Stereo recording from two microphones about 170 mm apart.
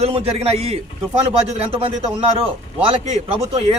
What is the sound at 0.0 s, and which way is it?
A man's voice, 35° right (ahead or behind).